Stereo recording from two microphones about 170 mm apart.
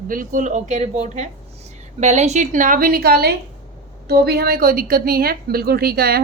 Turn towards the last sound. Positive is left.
turn(degrees=-65)  # may be behind; listen again after turning